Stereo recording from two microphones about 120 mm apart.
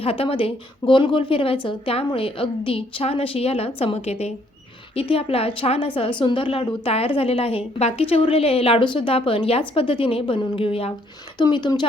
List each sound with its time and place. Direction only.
0.0 s a woman's voice: 55° left (ahead or behind)
11.3 s speech: 40° left (ahead or behind)